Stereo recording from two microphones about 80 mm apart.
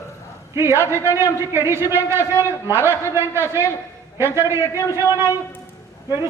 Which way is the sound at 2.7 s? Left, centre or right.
Right.